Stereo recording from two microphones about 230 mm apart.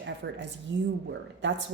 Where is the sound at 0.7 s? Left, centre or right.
Centre.